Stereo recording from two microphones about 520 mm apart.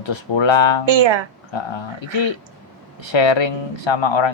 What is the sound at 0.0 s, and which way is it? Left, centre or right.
Speech, left.